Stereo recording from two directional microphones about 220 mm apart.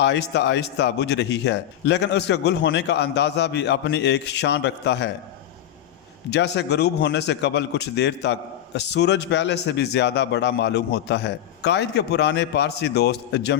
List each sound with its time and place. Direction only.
0.0 s a man's voice: 50° left (ahead or behind)
6.3 s a man's voice: 50° left (ahead or behind)